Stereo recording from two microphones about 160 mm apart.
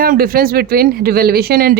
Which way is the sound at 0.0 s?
65° right (ahead or behind).